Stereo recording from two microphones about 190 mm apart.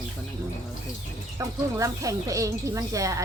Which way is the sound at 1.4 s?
15° right (ahead or behind).